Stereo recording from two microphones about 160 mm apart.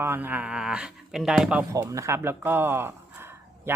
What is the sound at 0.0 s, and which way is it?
Speech, 10° right (ahead or behind).